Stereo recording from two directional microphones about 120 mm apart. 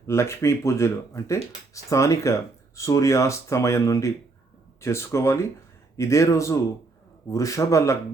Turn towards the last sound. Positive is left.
turn(degrees=25)  # may be behind; listen again after turning